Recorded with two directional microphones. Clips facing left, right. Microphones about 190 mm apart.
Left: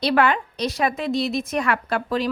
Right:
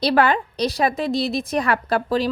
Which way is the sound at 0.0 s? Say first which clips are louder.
Right 1 dB; 35° right (ahead or behind).